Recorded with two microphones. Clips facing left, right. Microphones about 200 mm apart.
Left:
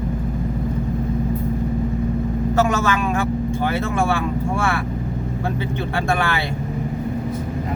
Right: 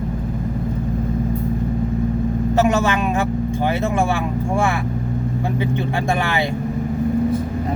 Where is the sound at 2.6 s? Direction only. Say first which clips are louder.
Right 2 dB; 20° right (ahead or behind).